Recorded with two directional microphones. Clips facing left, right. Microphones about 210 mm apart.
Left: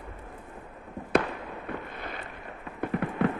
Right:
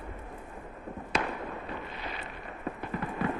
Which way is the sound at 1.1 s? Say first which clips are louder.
Left 7 dB; 60° left (ahead or behind).